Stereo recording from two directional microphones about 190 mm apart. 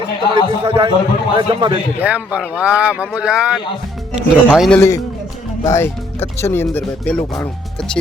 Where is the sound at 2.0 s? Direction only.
10° right (ahead or behind).